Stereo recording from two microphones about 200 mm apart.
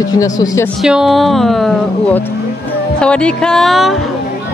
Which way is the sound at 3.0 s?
5° left (ahead or behind).